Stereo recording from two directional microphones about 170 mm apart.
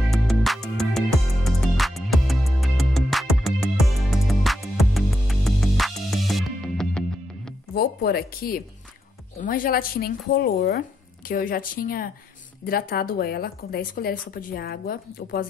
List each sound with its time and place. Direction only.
0.1 s music: centre (ahead or behind)
7.7 s speech: 65° left (ahead or behind)